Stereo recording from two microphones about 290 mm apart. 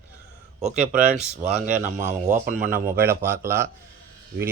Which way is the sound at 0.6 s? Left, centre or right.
Right.